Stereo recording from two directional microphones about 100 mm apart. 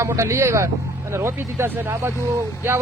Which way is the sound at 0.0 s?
30° right (ahead or behind).